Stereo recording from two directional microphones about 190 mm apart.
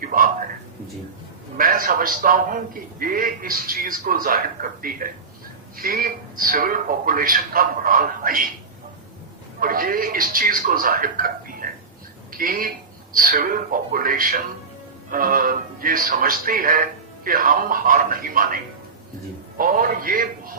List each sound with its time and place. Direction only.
0.0 s a sound: 50° right (ahead or behind)
1.5 s speech: 50° right (ahead or behind)
9.6 s speech: 50° right (ahead or behind)